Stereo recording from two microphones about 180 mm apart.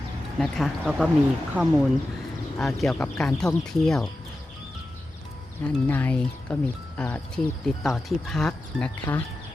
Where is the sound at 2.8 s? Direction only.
5° left (ahead or behind).